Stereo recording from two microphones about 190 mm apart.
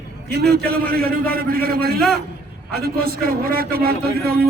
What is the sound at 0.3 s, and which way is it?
A man's voice, 55° right (ahead or behind).